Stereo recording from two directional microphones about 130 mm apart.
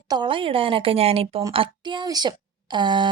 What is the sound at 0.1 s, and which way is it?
A woman's voice, 40° right (ahead or behind).